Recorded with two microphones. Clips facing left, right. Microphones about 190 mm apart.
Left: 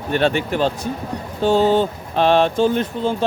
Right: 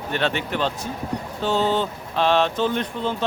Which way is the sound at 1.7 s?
50° left (ahead or behind).